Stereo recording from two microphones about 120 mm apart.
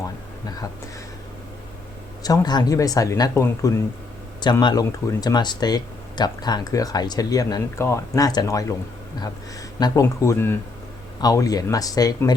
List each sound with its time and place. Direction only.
0.4 s speech: 30° left (ahead or behind)
2.2 s speech: 35° left (ahead or behind)
9.8 s speech: 30° left (ahead or behind)
11.2 s speech: 30° left (ahead or behind)